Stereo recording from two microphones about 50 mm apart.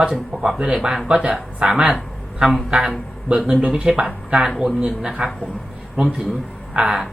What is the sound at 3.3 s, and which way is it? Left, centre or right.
Speech, centre.